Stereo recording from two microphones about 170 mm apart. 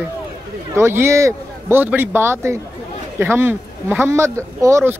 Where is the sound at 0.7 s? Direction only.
15° right (ahead or behind).